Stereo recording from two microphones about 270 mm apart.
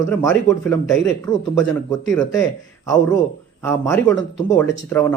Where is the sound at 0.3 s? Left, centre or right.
Centre.